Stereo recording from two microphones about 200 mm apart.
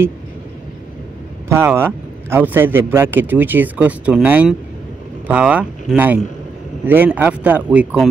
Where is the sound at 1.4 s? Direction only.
15° right (ahead or behind).